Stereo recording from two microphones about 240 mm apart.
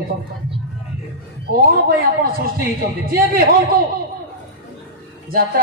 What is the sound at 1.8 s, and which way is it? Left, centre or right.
A man's voice, right.